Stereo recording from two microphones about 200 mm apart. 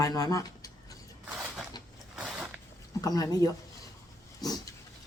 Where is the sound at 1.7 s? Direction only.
20° left (ahead or behind).